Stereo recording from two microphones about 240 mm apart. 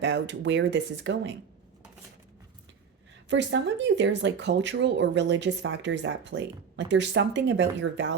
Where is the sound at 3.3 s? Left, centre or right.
Right.